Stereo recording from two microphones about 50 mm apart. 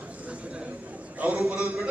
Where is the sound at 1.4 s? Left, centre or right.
Right.